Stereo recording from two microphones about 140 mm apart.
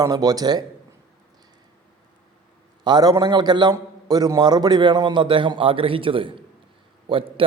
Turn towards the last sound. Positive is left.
turn(degrees=-40)  # may be behind; listen again after turning